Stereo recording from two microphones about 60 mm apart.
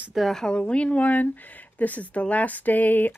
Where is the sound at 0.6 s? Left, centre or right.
Left.